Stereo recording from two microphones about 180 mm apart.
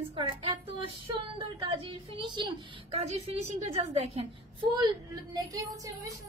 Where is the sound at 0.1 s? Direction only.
30° right (ahead or behind).